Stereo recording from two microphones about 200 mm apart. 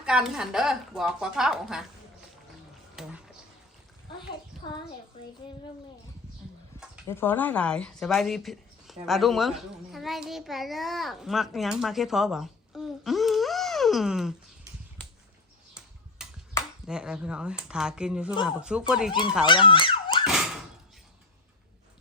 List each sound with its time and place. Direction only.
0.0 s speech: 5° right (ahead or behind)
2.9 s a sound: centre (ahead or behind)
7.1 s speech: 10° left (ahead or behind)
16.2 s ping: 5° right (ahead or behind)
16.8 s speech: 5° right (ahead or behind)
19.5 s siren: 25° left (ahead or behind)
20.2 s a sound: centre (ahead or behind)